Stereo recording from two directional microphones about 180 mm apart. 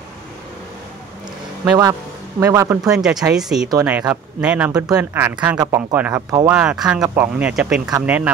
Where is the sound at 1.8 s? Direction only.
15° right (ahead or behind).